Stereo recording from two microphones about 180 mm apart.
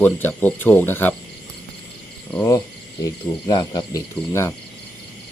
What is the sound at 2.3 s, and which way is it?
Cricket, 15° left (ahead or behind).